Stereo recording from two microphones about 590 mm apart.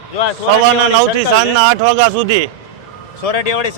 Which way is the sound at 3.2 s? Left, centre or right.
Left.